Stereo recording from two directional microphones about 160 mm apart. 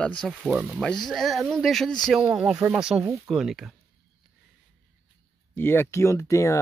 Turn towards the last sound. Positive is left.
turn(degrees=20)  # may be behind; listen again after turning